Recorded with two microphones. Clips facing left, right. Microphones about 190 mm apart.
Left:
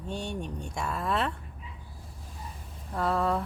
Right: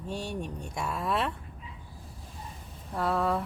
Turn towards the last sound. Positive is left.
turn(degrees=0)  # may be behind; listen again after turning